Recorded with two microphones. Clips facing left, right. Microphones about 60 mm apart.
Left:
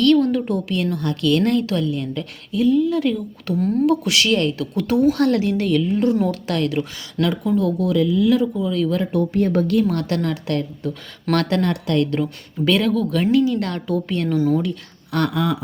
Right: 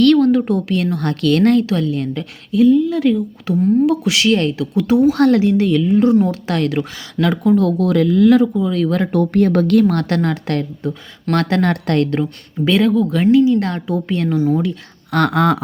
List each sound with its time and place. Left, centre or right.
0.0 s a sound: right
0.3 s a woman's voice: right
3.5 s speech: centre
4.3 s a woman's voice: right
4.5 s speech: centre
5.1 s a woman's voice: right; by 6.3 s centre
6.5 s a woman's voice: right
7.4 s speech: right
9.8 s a woman's voice: right
11.3 s a woman's voice: right
11.6 s speech: right
12.6 s a woman's voice: right
14.3 s speech: centre
15.1 s speech: right